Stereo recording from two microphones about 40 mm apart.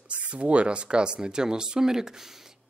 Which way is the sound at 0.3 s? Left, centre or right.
Right.